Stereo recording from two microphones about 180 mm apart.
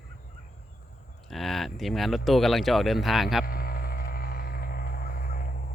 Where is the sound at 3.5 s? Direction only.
55° left (ahead or behind).